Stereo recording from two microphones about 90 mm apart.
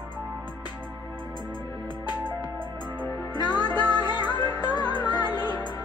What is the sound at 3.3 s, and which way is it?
Music, 50° left (ahead or behind).